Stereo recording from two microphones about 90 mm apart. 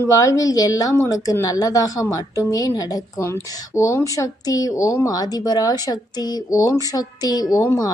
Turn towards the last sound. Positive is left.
turn(degrees=45)  # may be behind; listen again after turning